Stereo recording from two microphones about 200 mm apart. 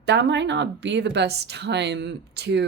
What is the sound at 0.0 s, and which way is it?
A woman's voice, 60° right (ahead or behind).